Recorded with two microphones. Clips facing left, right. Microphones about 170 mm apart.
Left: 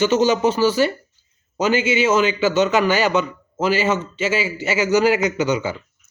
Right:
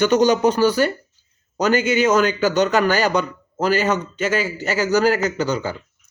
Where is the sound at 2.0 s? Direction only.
5° left (ahead or behind).